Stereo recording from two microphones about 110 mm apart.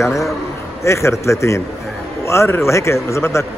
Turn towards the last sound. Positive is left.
turn(degrees=25)  # may be behind; listen again after turning